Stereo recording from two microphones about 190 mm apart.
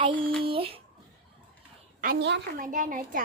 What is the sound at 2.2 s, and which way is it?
Speech, 65° right (ahead or behind).